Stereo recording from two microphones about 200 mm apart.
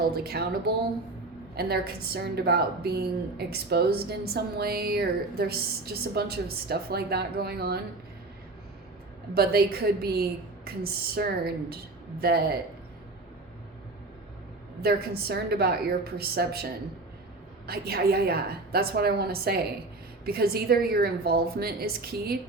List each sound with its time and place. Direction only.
0.0 s a woman's voice: 50° right (ahead or behind)
1.5 s a woman's voice: 50° right (ahead or behind)
9.3 s a woman's voice: 50° right (ahead or behind)
14.8 s a woman's voice: 50° right (ahead or behind)